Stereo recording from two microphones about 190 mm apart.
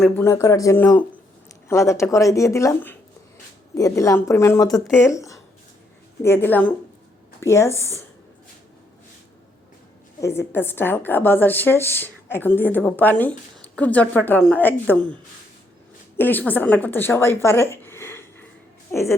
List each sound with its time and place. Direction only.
0.0 s a woman's voice: 10° left (ahead or behind)
4.9 s speech: 5° right (ahead or behind)
5.1 s a woman's voice: 15° left (ahead or behind)
10.2 s a woman's voice: 15° left (ahead or behind)